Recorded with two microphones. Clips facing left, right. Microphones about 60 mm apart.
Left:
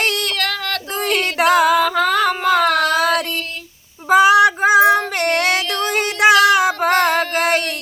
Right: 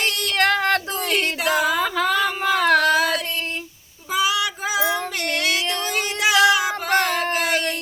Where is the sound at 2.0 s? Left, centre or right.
Left.